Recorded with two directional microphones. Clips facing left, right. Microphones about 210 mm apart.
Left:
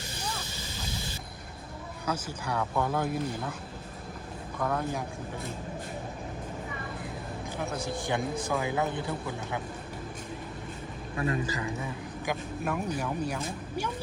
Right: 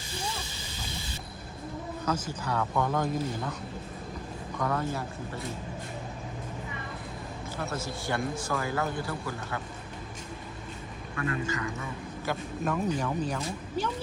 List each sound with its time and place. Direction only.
2.2 s a man's voice: 10° left (ahead or behind)
4.6 s a man's voice: 10° left (ahead or behind)
7.6 s a man's voice: 15° left (ahead or behind)
11.2 s a man's voice: 30° left (ahead or behind)
11.8 s a man's voice: 15° left (ahead or behind)